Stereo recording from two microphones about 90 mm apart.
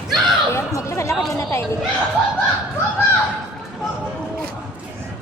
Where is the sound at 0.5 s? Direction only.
35° left (ahead or behind).